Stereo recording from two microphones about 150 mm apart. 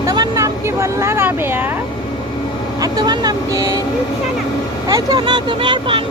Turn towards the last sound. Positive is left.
turn(degrees=-35)  # may be behind; listen again after turning